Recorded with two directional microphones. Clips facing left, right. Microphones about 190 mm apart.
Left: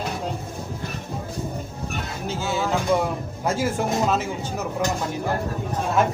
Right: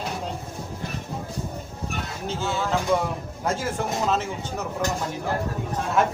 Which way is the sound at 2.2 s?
5° left (ahead or behind).